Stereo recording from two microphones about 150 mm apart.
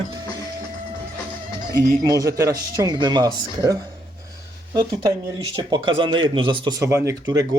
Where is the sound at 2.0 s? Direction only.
25° right (ahead or behind).